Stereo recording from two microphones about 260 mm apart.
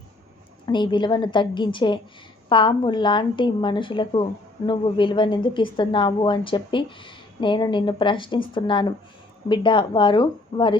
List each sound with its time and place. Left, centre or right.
0.6 s a woman's voice: centre